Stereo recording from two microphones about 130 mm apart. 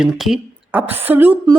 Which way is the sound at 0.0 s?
5° right (ahead or behind).